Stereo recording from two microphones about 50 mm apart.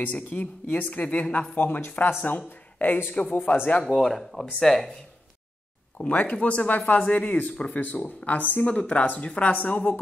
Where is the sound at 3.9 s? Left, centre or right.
Centre.